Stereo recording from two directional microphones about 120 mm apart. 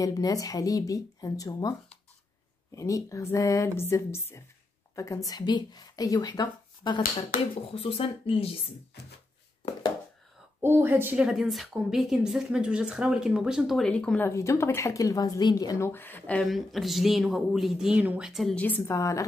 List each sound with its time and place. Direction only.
0.0 s a woman's voice: 30° left (ahead or behind)
7.6 s speech: 50° left (ahead or behind)
10.6 s speech: 20° right (ahead or behind)
11.1 s a woman's voice: 5° right (ahead or behind)
14.3 s speech: 25° left (ahead or behind)
15.9 s speech: 15° left (ahead or behind)
16.4 s a woman's voice: centre (ahead or behind)
18.3 s a woman's voice: centre (ahead or behind)
18.6 s speech: 15° left (ahead or behind)